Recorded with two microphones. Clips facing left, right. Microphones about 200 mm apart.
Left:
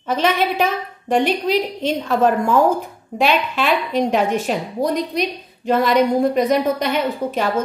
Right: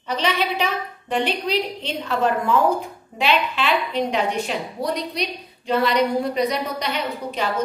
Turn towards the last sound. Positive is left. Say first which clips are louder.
# left 4 dB
turn(degrees=50)  # may be behind; listen again after turning